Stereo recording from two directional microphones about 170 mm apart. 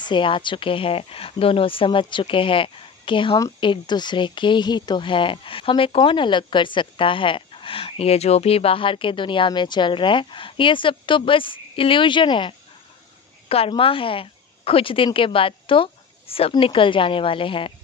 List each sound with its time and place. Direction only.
0.0 s speech: 30° left (ahead or behind)